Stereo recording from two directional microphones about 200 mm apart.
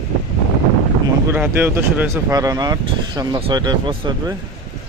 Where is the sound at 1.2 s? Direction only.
10° right (ahead or behind); by 4.3 s 25° right (ahead or behind).